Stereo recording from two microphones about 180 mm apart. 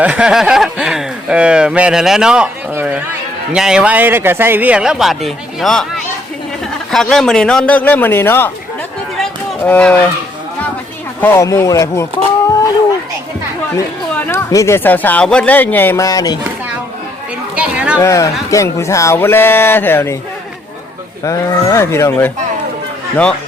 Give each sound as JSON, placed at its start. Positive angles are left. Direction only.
{"t": 0.0, "sound": "a man's voice", "side_deg": -5}
{"t": 6.9, "sound": "speech", "side_deg": 0}
{"t": 9.1, "sound": "run", "side_deg": 5}
{"t": 11.2, "sound": "speech", "side_deg": 15}
{"t": 14.3, "sound": "speech", "side_deg": 15}
{"t": 17.5, "sound": "speech", "side_deg": -5}
{"t": 18.0, "sound": "speech", "side_deg": 15}
{"t": 21.2, "sound": "speech", "side_deg": 15}